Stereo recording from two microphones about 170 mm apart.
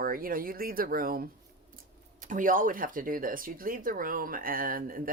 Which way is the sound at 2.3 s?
50° right (ahead or behind).